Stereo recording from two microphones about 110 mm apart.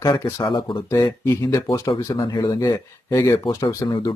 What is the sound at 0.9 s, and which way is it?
Speech, 30° left (ahead or behind).